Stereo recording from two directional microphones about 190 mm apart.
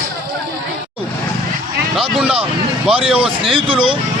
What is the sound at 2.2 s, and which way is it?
Speech, 5° right (ahead or behind).